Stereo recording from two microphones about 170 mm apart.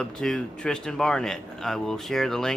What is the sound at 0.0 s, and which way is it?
A man's voice, 5° left (ahead or behind).